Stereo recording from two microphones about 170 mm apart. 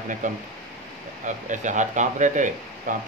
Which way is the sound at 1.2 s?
45° right (ahead or behind).